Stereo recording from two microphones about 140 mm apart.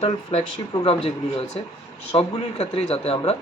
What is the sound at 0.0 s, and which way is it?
A man's voice, 50° left (ahead or behind).